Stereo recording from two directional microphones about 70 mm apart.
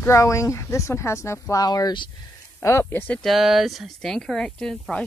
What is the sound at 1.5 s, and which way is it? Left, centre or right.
Speech, left.